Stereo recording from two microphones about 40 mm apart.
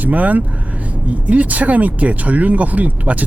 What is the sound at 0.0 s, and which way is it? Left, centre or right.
Speech, right.